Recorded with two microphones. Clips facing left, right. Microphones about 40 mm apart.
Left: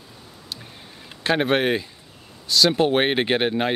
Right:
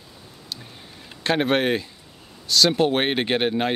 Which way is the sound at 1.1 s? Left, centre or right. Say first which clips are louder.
Left 1 dB; centre.